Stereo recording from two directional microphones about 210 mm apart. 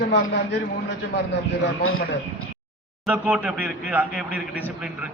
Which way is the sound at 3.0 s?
5° right (ahead or behind).